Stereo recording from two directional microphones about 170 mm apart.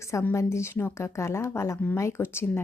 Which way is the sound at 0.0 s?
15° left (ahead or behind).